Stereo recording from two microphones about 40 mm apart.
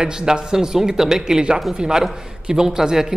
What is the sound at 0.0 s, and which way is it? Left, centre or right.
A woman's voice, centre.